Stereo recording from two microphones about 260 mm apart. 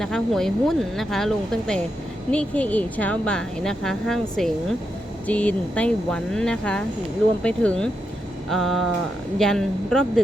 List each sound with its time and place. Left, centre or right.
0.0 s speech: centre